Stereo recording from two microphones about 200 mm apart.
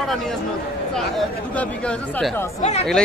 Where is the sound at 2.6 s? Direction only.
35° left (ahead or behind).